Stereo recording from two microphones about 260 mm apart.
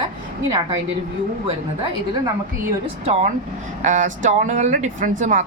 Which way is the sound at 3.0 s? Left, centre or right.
Right.